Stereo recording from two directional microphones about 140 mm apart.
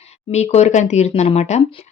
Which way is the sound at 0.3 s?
50° left (ahead or behind).